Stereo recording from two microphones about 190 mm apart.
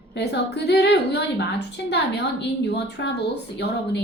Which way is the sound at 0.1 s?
60° left (ahead or behind).